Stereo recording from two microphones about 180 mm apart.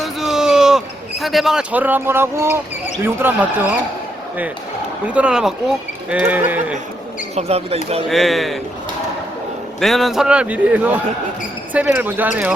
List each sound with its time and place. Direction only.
0.0 s a sound: centre (ahead or behind)
1.2 s speech: centre (ahead or behind)
5.0 s a man's voice: 5° right (ahead or behind)
7.3 s speech: 35° right (ahead or behind)
8.1 s a man's voice: centre (ahead or behind)
9.8 s a man's voice: centre (ahead or behind)